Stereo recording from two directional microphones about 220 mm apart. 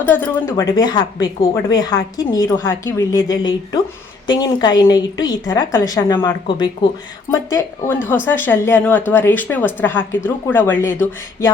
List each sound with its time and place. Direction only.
0.0 s a woman's voice: 10° left (ahead or behind)